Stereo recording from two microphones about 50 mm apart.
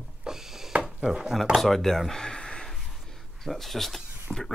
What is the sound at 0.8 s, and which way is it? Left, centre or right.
Speech, centre.